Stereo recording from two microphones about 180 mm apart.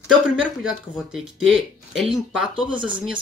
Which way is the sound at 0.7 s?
Centre (ahead or behind).